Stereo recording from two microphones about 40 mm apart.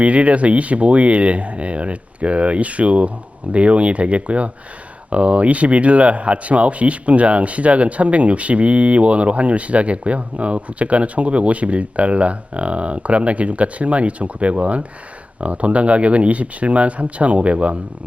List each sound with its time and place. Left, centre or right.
0.0 s speech: right